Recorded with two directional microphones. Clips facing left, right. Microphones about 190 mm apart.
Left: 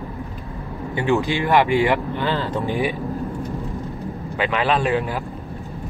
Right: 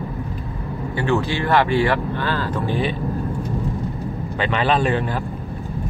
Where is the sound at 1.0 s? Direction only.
15° left (ahead or behind).